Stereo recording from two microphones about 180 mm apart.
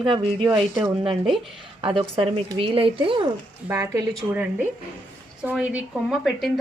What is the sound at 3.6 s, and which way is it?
A woman's voice, 20° right (ahead or behind).